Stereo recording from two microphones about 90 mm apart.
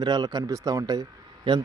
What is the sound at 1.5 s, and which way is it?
Speech, 55° right (ahead or behind).